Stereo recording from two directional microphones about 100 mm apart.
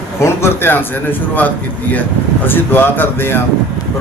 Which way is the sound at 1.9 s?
20° left (ahead or behind).